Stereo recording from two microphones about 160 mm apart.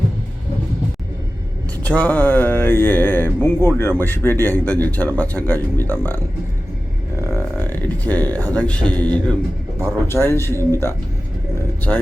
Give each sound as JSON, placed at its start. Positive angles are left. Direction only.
{"t": 1.8, "sound": "speech", "side_deg": 10}
{"t": 7.3, "sound": "speech", "side_deg": 10}